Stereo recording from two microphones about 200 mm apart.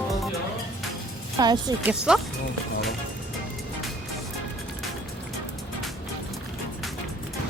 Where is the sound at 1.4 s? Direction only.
20° right (ahead or behind).